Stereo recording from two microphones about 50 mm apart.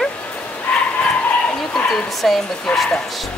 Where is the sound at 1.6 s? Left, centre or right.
Centre.